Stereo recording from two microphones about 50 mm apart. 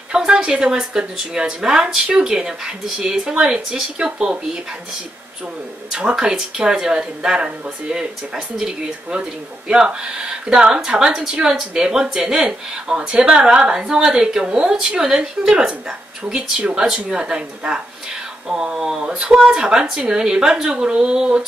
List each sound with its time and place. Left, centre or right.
0.1 s speech: centre
5.9 s speech: centre
16.8 s speech: centre